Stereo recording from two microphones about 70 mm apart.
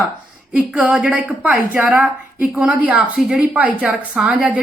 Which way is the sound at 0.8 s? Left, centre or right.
Centre.